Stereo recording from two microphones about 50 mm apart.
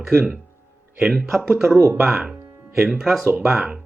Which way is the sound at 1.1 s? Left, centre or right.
Centre.